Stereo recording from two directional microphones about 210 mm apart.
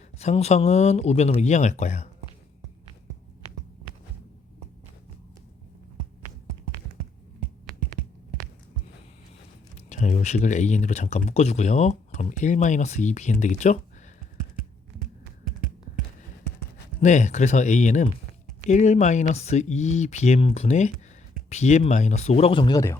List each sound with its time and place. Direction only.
0.2 s speech: 30° left (ahead or behind)
9.9 s speech: 35° left (ahead or behind)
17.0 s speech: 35° left (ahead or behind); by 23.0 s 15° left (ahead or behind)